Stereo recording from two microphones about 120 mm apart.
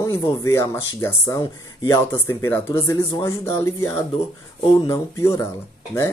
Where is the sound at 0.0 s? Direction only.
30° left (ahead or behind).